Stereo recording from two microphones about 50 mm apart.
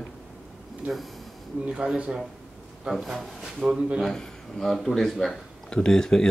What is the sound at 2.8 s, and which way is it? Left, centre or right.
Speech, centre.